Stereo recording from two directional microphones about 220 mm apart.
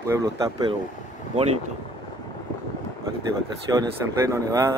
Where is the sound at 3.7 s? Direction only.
15° right (ahead or behind).